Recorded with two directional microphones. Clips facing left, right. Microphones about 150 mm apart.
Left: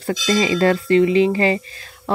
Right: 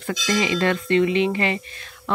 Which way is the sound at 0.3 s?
35° left (ahead or behind).